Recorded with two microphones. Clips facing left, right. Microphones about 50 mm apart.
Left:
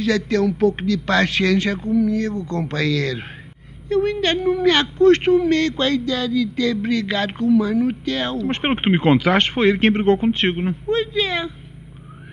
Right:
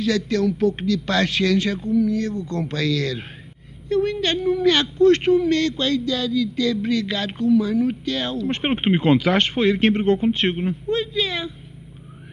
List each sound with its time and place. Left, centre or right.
0.0 s a woman's voice: left